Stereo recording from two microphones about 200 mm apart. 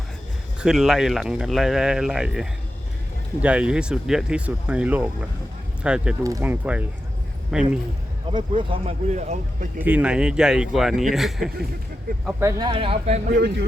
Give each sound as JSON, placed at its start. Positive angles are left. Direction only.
{"t": 0.6, "sound": "speech", "side_deg": 0}
{"t": 8.3, "sound": "speech", "side_deg": -25}
{"t": 9.8, "sound": "speech", "side_deg": -5}
{"t": 12.4, "sound": "speech", "side_deg": -20}
{"t": 13.3, "sound": "speech", "side_deg": -55}